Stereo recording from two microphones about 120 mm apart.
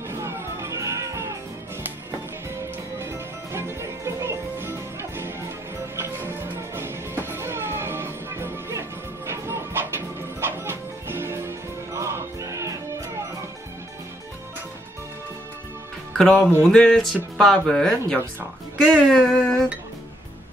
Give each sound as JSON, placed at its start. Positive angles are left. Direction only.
{"t": 0.1, "sound": "music", "side_deg": -20}
{"t": 2.5, "sound": "music", "side_deg": -20}
{"t": 16.2, "sound": "music", "side_deg": 10}
{"t": 16.6, "sound": "speech", "side_deg": 5}